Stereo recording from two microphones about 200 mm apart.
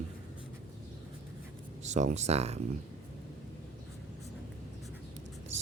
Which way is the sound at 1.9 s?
35° right (ahead or behind).